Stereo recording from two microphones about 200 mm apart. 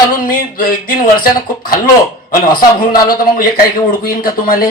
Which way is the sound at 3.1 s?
45° left (ahead or behind).